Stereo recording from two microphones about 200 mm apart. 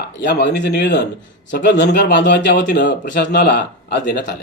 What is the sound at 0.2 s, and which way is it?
A man's voice, 60° left (ahead or behind).